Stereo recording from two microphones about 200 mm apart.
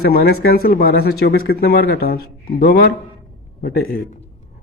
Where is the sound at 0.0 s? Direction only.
50° left (ahead or behind).